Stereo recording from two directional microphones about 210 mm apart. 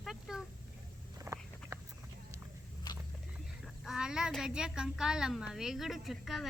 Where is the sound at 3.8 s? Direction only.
5° right (ahead or behind).